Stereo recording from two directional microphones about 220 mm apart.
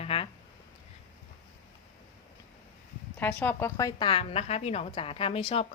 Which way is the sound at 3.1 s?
10° left (ahead or behind).